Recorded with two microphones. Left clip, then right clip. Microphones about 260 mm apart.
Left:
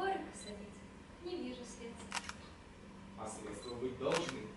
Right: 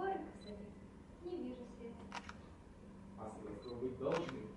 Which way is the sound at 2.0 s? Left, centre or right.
Centre.